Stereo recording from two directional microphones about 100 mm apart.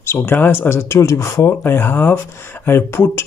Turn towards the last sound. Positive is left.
turn(degrees=25)  # may be behind; listen again after turning